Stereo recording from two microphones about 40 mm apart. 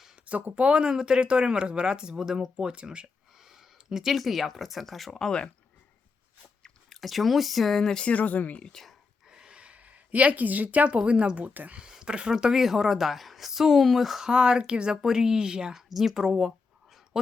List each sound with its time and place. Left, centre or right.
0.3 s speech: right
0.6 s speech: right
2.1 s speech: centre
2.6 s speech: right
3.5 s speech: centre
5.2 s speech: left
6.9 s speech: centre
8.0 s speech: left
9.3 s a sound: centre
9.6 s speech: right
11.8 s speech: centre
12.5 s speech: centre
14.3 s speech: right
15.9 s speech: centre